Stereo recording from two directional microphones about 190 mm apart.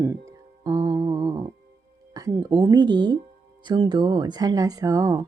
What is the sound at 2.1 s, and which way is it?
Speech, 20° right (ahead or behind).